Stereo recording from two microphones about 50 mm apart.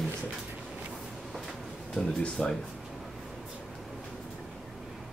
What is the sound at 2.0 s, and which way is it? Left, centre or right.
Speech, centre.